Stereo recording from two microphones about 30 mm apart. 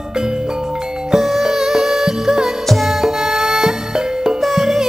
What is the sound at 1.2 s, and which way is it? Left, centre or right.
Music, centre.